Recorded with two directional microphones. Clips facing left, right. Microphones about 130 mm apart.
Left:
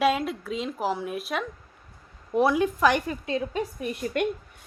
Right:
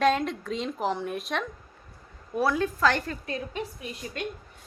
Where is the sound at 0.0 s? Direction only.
5° left (ahead or behind).